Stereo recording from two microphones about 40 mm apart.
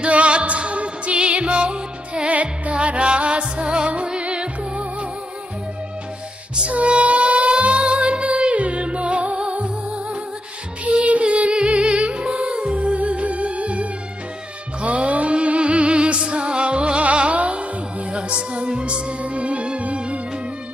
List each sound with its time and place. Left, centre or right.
0.0 s music: right
2.3 s music: right
6.7 s music: right
11.1 s music: right